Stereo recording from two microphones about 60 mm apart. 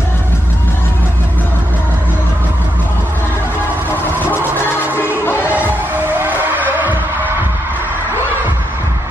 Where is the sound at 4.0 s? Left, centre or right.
Left.